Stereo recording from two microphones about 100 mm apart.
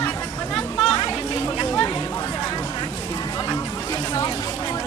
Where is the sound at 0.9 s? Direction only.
55° left (ahead or behind).